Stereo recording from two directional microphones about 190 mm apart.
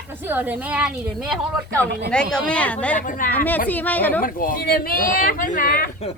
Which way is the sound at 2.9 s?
45° left (ahead or behind).